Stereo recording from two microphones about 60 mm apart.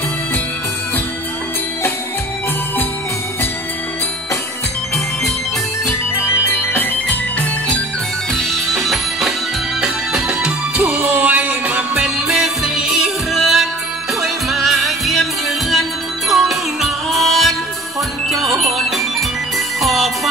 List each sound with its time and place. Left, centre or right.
5.9 s music: left
8.3 s music: centre
9.8 s music: centre
10.8 s music: right
12.4 s music: centre
16.3 s music: centre